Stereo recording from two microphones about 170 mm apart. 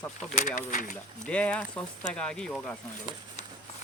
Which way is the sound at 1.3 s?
5° left (ahead or behind).